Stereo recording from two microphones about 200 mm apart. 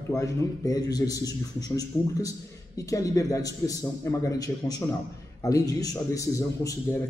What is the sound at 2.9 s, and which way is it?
A man's voice, 15° left (ahead or behind).